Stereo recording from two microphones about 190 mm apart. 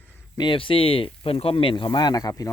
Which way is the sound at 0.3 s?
25° left (ahead or behind).